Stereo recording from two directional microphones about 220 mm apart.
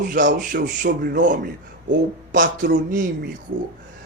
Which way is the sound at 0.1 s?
35° right (ahead or behind).